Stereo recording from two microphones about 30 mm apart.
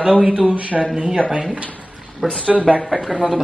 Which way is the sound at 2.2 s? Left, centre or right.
Left.